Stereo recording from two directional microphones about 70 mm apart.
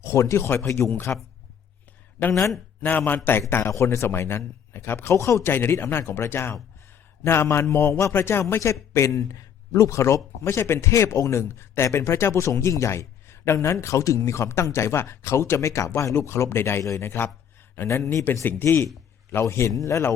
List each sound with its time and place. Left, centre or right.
0.0 s a man's voice: left
2.8 s a man's voice: left
3.6 s a man's voice: left
17.8 s a man's voice: left
18.6 s a man's voice: left